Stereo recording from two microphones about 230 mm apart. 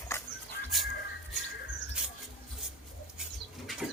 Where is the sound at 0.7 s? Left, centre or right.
Centre.